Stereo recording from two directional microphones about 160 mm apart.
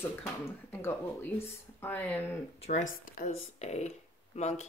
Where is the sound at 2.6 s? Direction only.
50° left (ahead or behind).